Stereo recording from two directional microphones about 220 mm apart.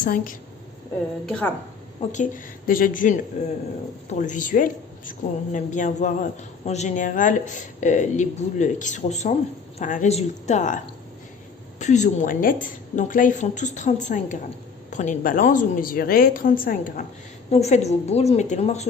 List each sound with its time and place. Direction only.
0.0 s speech: 40° left (ahead or behind)
1.3 s a woman's voice: 5° left (ahead or behind)
2.6 s speech: 40° left (ahead or behind)
11.8 s a woman's voice: 30° left (ahead or behind)